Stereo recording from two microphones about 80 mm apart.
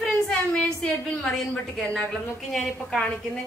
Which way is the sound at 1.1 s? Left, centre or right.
Centre.